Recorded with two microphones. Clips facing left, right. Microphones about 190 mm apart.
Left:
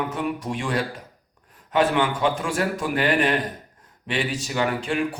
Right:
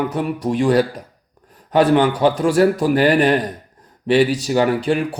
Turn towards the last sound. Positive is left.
turn(degrees=-35)  # may be behind; listen again after turning